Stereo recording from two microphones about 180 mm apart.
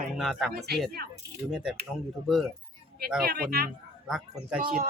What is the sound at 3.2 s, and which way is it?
Speech, 60° right (ahead or behind).